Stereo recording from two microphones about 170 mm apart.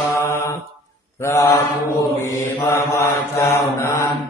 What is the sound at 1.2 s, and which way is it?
Mantra, 15° left (ahead or behind).